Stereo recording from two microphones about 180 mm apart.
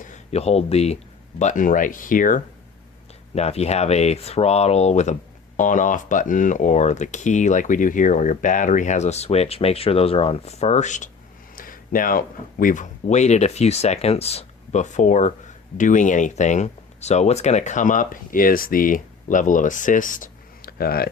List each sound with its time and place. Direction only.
0.0 s speech: 40° left (ahead or behind)
3.3 s speech: 35° left (ahead or behind); by 21.1 s 55° left (ahead or behind)